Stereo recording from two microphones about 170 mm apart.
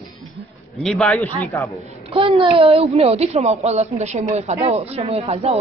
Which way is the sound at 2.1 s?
30° right (ahead or behind).